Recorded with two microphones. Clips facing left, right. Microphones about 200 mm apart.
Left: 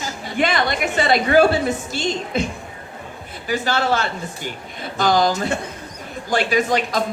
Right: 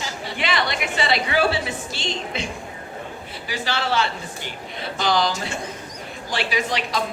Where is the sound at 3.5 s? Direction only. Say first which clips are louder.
Left 5 dB; 50° left (ahead or behind).